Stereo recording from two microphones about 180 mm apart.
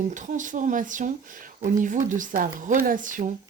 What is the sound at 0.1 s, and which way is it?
Speech, 45° right (ahead or behind).